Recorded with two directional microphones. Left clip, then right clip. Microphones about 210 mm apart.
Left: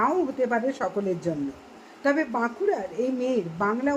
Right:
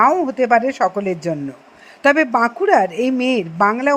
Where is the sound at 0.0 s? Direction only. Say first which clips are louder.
Right 9 dB; 25° right (ahead or behind).